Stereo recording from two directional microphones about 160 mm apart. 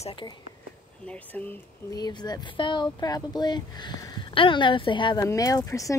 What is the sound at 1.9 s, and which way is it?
Speech, 25° left (ahead or behind).